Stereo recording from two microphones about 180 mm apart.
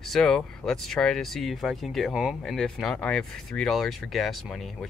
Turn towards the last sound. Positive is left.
turn(degrees=0)  # may be behind; listen again after turning